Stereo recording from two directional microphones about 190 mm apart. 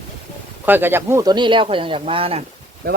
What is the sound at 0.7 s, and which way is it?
Speech, 10° right (ahead or behind).